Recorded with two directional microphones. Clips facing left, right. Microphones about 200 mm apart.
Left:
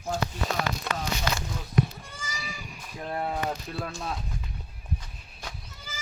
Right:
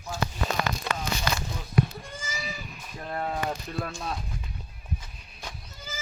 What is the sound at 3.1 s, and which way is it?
Speech, 10° left (ahead or behind).